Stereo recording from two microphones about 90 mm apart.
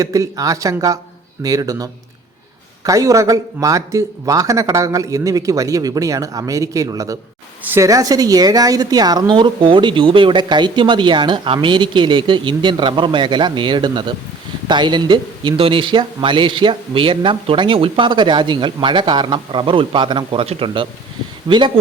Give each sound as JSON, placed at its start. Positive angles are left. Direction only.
{"t": 0.0, "sound": "speech", "side_deg": -40}
{"t": 21.5, "sound": "speech", "side_deg": -55}